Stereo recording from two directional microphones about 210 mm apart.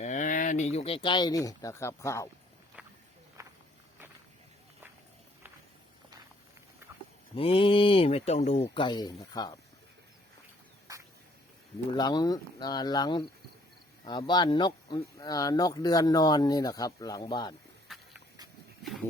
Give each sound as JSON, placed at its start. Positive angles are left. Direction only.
{"t": 0.0, "sound": "speech", "side_deg": 35}
{"t": 2.8, "sound": "walk", "side_deg": -5}
{"t": 7.3, "sound": "speech", "side_deg": 25}
{"t": 11.9, "sound": "speech", "side_deg": 20}
{"t": 17.9, "sound": "a sound", "side_deg": 0}